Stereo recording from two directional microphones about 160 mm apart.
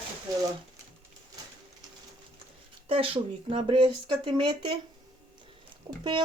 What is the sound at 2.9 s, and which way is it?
Speech, 35° right (ahead or behind).